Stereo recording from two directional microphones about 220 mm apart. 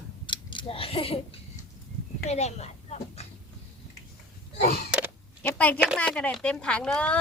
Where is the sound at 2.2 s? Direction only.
30° left (ahead or behind).